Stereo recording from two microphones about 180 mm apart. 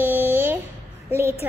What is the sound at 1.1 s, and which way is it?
Speech, 15° right (ahead or behind).